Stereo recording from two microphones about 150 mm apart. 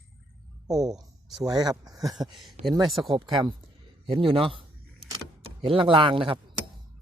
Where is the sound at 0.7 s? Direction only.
25° right (ahead or behind).